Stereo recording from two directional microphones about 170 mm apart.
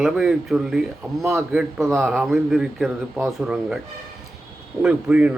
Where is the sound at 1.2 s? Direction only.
15° right (ahead or behind).